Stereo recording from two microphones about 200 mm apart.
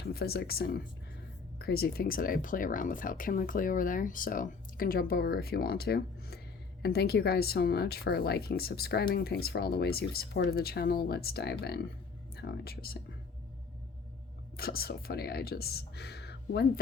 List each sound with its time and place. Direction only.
0.0 s speech: 50° left (ahead or behind)
14.5 s speech: 50° left (ahead or behind)